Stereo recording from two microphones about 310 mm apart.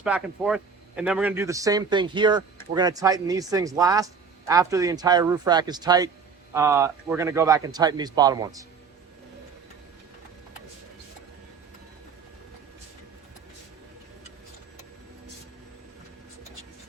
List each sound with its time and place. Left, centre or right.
0.0 s speech: centre